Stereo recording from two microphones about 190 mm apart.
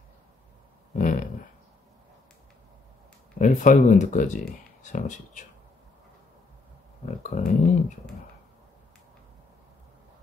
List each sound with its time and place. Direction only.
0.9 s a sound: 45° left (ahead or behind)
3.3 s speech: 40° left (ahead or behind)
7.2 s speech: 40° left (ahead or behind)